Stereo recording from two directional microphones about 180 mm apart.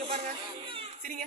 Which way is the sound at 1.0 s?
45° right (ahead or behind).